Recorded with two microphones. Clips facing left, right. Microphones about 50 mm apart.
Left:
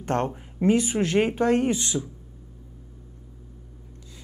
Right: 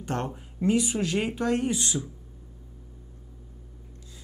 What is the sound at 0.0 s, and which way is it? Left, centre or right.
Speech, left.